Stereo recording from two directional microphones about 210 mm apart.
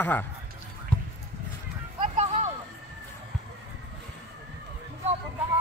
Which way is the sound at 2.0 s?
30° right (ahead or behind).